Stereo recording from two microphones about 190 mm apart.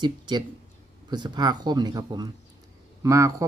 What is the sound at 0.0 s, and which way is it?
Speech, 25° right (ahead or behind).